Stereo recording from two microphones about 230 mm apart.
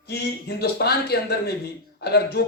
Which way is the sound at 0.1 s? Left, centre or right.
Left.